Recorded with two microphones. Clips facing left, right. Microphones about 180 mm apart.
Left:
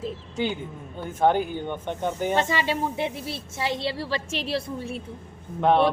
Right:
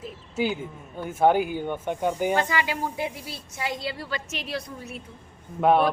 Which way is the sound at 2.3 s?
25° left (ahead or behind).